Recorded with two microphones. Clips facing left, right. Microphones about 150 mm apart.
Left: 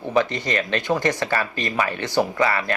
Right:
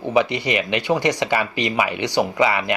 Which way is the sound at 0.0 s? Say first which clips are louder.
Right 2 dB; 15° right (ahead or behind).